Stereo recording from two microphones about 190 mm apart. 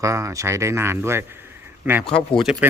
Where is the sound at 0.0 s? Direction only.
15° right (ahead or behind).